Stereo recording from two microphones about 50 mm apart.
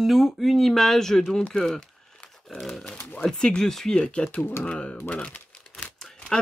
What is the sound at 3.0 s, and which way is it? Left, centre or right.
Speech, left.